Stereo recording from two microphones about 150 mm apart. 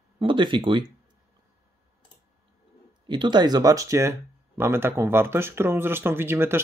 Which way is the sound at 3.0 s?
30° right (ahead or behind).